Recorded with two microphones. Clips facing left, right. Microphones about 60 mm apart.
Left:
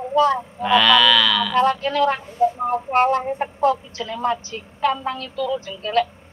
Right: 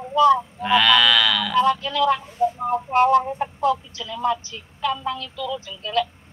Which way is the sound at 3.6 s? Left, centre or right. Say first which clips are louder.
Left 3 dB; left.